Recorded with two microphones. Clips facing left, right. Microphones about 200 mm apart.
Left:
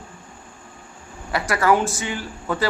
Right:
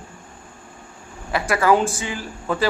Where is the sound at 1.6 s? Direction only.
30° right (ahead or behind).